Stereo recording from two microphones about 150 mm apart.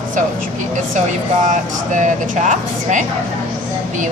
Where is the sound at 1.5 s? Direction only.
55° right (ahead or behind).